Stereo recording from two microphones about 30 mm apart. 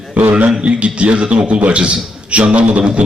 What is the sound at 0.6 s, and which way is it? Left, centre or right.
A man's voice, right.